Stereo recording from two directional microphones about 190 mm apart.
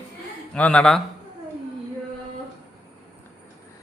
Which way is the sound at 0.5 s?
5° left (ahead or behind).